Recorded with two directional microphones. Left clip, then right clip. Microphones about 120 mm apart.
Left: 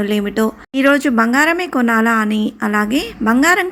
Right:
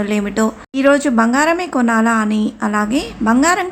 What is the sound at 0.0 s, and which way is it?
A woman's voice, 20° left (ahead or behind).